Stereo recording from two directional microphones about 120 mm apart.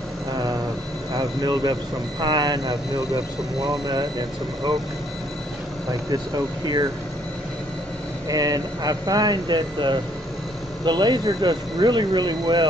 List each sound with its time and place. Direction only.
0.3 s vehicle: 30° right (ahead or behind)
1.1 s speech: 35° right (ahead or behind)
6.3 s speech: 35° right (ahead or behind)
8.3 s speech: 30° right (ahead or behind)